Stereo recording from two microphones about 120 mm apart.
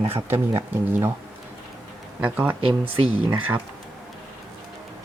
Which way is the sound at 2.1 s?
10° right (ahead or behind).